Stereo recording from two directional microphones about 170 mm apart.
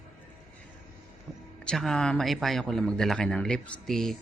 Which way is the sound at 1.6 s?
5° left (ahead or behind).